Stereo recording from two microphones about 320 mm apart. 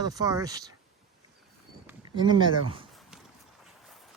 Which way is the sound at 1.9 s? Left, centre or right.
Centre.